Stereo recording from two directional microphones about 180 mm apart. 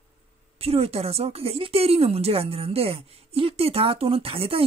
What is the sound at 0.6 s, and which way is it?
Speech, 35° right (ahead or behind).